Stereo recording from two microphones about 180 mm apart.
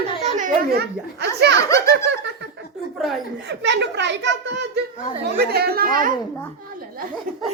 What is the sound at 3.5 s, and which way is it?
A child's voice, 75° right (ahead or behind).